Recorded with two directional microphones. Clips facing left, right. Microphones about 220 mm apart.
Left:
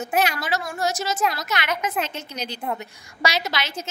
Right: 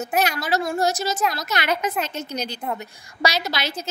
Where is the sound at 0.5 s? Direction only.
35° right (ahead or behind).